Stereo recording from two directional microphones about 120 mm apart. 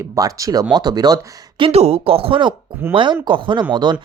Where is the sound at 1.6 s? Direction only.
60° right (ahead or behind); by 3.9 s 40° right (ahead or behind).